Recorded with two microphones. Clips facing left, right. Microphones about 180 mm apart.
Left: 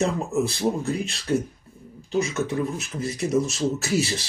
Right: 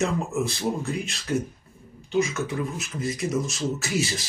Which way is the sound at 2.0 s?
35° left (ahead or behind).